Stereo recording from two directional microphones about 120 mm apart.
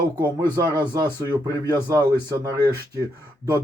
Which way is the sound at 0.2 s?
35° right (ahead or behind).